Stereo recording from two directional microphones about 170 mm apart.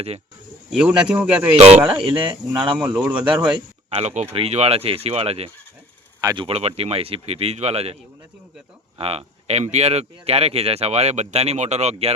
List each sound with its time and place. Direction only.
0.7 s speech: 5° right (ahead or behind)
1.5 s speech: 35° right (ahead or behind)
2.7 s a man's voice: 10° right (ahead or behind)
3.8 s speech: 40° right (ahead or behind)
9.0 s speech: 35° right (ahead or behind)